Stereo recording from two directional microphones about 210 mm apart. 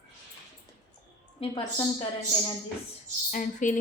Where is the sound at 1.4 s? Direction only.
25° left (ahead or behind).